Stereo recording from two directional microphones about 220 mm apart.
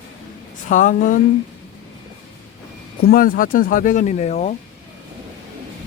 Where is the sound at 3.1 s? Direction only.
40° left (ahead or behind).